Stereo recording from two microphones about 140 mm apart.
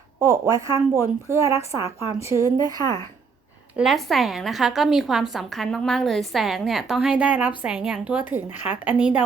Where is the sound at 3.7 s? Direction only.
Centre (ahead or behind).